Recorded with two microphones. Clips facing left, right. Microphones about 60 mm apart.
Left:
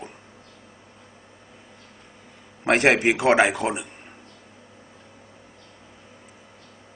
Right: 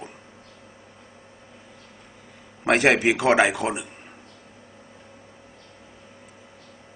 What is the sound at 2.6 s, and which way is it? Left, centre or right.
A man's voice, centre.